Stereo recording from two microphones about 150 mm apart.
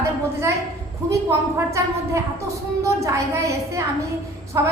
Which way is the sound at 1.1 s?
20° right (ahead or behind).